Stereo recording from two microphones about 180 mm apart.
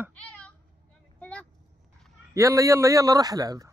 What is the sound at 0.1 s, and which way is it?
Cat, 10° left (ahead or behind).